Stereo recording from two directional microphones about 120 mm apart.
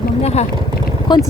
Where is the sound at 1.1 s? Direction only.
40° left (ahead or behind).